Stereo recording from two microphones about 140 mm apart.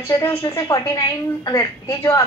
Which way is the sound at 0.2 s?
20° left (ahead or behind).